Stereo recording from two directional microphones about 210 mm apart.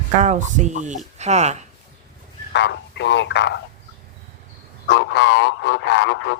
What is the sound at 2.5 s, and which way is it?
Speech, 55° left (ahead or behind).